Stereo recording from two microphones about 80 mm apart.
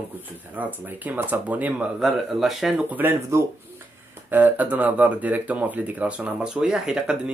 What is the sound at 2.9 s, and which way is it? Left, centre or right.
Speech, right.